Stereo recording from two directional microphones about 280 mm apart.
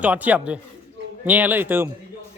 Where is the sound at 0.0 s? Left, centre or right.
Centre.